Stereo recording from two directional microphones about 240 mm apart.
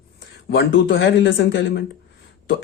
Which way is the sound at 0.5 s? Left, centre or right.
Left.